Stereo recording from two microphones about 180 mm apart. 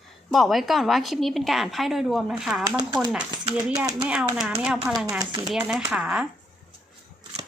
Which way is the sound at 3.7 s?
20° right (ahead or behind).